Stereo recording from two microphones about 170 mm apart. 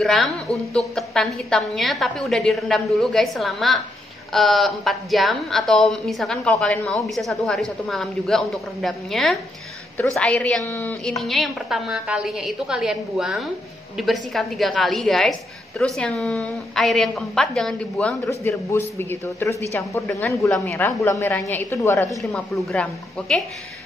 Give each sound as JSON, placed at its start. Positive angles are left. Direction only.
{"t": 0.0, "sound": "a woman's voice", "side_deg": 0}
{"t": 11.1, "sound": "a woman's voice", "side_deg": 0}
{"t": 22.2, "sound": "a woman's voice", "side_deg": 0}